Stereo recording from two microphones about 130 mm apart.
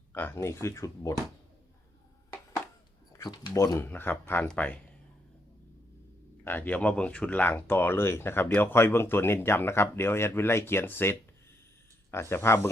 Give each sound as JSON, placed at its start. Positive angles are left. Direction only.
{"t": 0.1, "sound": "speech", "side_deg": 15}
{"t": 3.1, "sound": "speech", "side_deg": 30}
{"t": 3.5, "sound": "speech", "side_deg": 25}
{"t": 6.4, "sound": "speech", "side_deg": 15}